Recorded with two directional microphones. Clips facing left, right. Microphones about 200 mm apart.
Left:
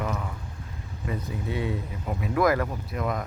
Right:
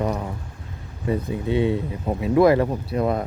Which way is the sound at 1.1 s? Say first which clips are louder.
Right 8 dB; 25° right (ahead or behind).